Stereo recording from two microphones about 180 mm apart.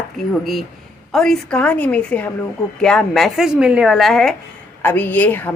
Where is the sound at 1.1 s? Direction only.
5° left (ahead or behind).